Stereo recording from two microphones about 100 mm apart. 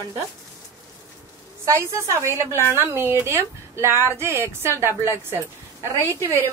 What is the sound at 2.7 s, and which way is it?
Speech, 25° right (ahead or behind).